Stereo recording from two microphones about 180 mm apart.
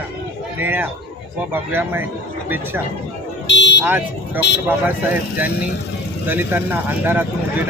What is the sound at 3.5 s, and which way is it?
Vehicle, 75° left (ahead or behind).